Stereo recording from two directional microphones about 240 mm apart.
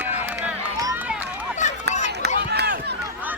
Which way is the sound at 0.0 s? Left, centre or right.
Centre.